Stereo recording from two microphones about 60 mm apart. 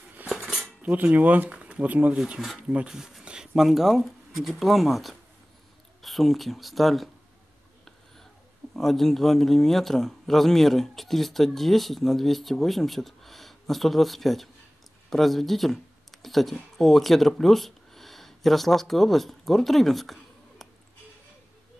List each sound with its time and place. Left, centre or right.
0.3 s cutlery: centre
0.8 s speech: right
2.1 s speech: centre
2.9 s a sound: centre
3.6 s speech: centre
8.7 s speech: centre